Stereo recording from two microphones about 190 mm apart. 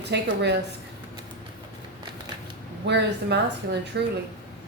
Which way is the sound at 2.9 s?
60° right (ahead or behind).